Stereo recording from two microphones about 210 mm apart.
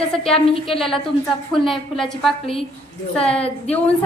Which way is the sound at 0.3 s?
25° left (ahead or behind).